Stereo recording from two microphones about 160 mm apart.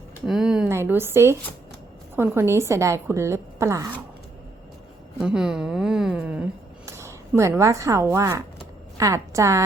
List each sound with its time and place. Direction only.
0.3 s a sound: 5° right (ahead or behind)
0.7 s a woman's voice: 15° right (ahead or behind)
5.2 s speech: 5° right (ahead or behind)
6.8 s a woman's voice: 15° right (ahead or behind)